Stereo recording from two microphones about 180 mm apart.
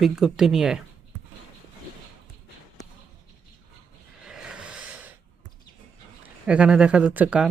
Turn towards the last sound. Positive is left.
turn(degrees=-10)  # may be behind; listen again after turning